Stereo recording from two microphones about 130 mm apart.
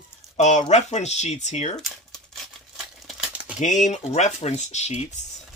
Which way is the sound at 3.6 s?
70° left (ahead or behind).